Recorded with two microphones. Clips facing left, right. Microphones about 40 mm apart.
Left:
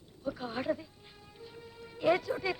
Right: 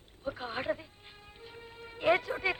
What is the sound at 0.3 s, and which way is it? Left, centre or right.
Speech, right.